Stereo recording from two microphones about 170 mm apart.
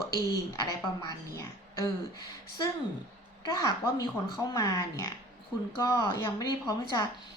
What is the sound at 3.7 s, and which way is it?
Speech, 20° left (ahead or behind).